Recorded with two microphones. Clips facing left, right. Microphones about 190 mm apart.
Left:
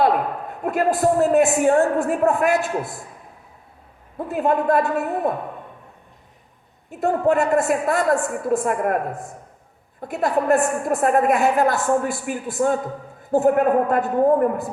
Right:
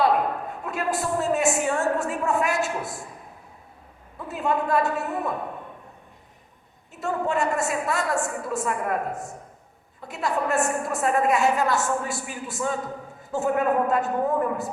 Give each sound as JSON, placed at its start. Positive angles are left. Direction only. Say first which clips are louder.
{"t": 0.6, "sound": "a woman's voice", "louder": "left 9 dB", "side_deg": 55}
{"t": 4.2, "sound": "a man's voice", "louder": "left 5 dB", "side_deg": 55}
{"t": 7.0, "sound": "a woman's voice", "louder": "left 6 dB", "side_deg": 55}
{"t": 10.0, "sound": "a woman's voice", "louder": "left 5 dB", "side_deg": 55}